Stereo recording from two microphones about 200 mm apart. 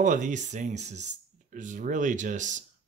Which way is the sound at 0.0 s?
40° right (ahead or behind).